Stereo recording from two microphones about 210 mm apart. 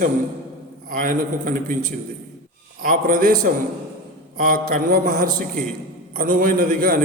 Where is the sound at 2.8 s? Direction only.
45° right (ahead or behind).